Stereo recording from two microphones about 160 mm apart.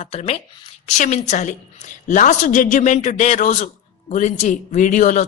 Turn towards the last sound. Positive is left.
turn(degrees=50)  # may be behind; listen again after turning